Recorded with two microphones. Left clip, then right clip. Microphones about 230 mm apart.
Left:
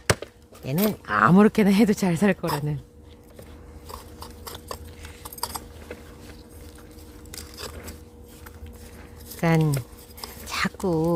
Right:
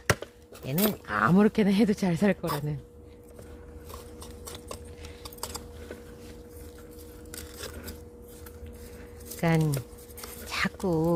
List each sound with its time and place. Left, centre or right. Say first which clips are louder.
0.2 s speech: left 2 dB; centre
9.4 s speech: left 4 dB; centre
10.4 s whispering: left 3 dB; centre